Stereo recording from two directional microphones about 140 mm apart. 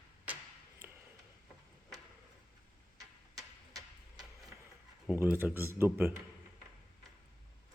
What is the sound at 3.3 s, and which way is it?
Tick-tock, 25° right (ahead or behind).